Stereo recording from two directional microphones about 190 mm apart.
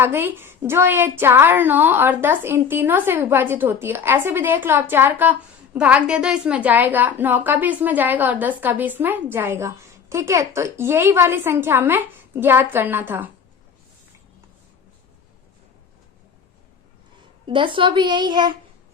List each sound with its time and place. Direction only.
0.0 s a woman's voice: 10° right (ahead or behind)
17.4 s speech: 25° right (ahead or behind)